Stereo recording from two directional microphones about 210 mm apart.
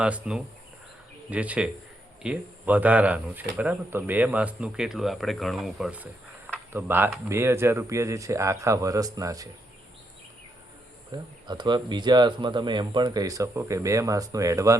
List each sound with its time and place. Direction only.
0.0 s speech: 5° right (ahead or behind)
11.1 s speech: 20° right (ahead or behind)